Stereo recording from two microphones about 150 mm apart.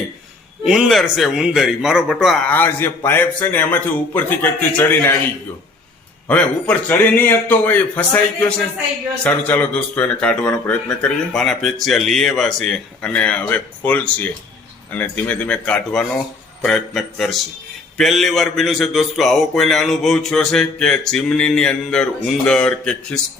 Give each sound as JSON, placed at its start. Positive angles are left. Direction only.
{"t": 0.6, "sound": "a man's voice", "side_deg": -5}
{"t": 6.2, "sound": "a man's voice", "side_deg": 10}